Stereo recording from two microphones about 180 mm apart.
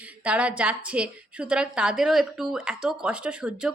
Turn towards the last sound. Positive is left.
turn(degrees=-5)  # may be behind; listen again after turning